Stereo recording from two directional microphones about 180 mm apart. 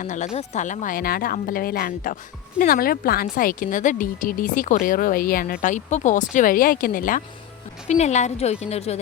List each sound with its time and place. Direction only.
0.0 s a woman's voice: 45° left (ahead or behind)
5.6 s a woman's voice: 40° left (ahead or behind)
7.9 s a woman's voice: 40° left (ahead or behind)